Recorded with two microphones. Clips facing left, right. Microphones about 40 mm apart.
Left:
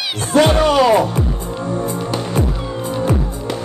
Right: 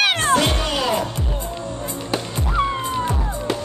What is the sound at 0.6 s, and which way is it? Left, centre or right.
Speech, left.